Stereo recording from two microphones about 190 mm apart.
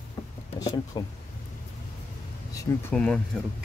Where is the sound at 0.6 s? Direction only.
20° left (ahead or behind).